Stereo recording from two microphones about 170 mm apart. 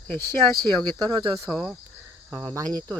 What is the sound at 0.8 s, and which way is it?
Speech, 25° right (ahead or behind).